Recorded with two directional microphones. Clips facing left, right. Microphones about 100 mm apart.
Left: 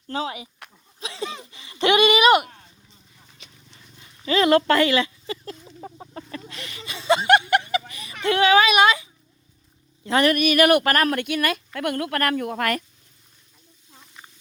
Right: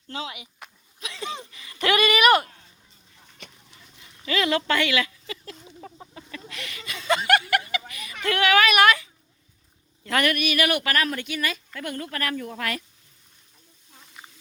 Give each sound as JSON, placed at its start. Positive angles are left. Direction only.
{"t": 0.1, "sound": "speech", "side_deg": 35}
{"t": 0.9, "sound": "a sound", "side_deg": 30}
{"t": 3.3, "sound": "horse", "side_deg": -50}
{"t": 4.4, "sound": "a woman's voice", "side_deg": 50}
{"t": 5.6, "sound": "chicken", "side_deg": 15}
{"t": 6.1, "sound": "a sound", "side_deg": 35}
{"t": 8.2, "sound": "speech", "side_deg": 25}
{"t": 10.3, "sound": "a woman's voice", "side_deg": 45}